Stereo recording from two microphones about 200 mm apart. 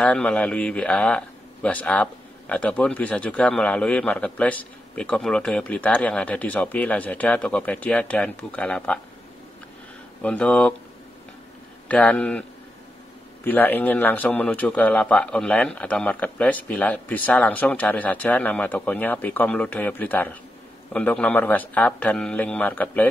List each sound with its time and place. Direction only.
0.0 s a man's voice: 5° left (ahead or behind)
10.2 s a man's voice: 5° left (ahead or behind)
11.9 s a man's voice: 5° left (ahead or behind)